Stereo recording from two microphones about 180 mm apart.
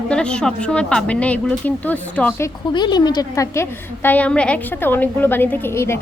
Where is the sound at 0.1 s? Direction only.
5° left (ahead or behind).